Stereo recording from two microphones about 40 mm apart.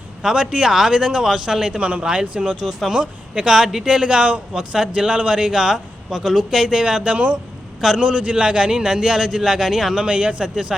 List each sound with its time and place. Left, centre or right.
0.2 s a man's voice: centre
0.7 s a man's voice: centre
0.9 s a man's voice: right
2.4 s a man's voice: centre
10.1 s a man's voice: right